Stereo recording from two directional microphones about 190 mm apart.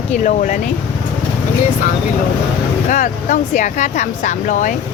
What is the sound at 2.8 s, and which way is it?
Speech, 40° left (ahead or behind).